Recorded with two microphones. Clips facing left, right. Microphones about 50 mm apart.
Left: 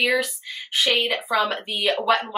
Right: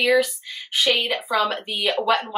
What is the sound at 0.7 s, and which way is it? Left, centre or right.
Speech, centre.